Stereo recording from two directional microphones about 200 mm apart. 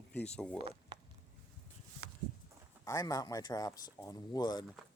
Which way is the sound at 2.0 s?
90° right.